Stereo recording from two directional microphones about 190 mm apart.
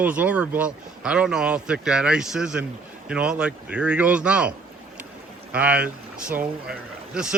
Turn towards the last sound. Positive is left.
turn(degrees=-5)  # may be behind; listen again after turning